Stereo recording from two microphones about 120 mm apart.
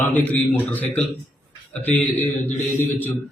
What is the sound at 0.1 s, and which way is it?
Speech, 15° left (ahead or behind).